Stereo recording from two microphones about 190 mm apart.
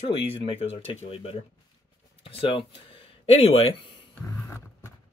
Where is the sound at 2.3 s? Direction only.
30° left (ahead or behind).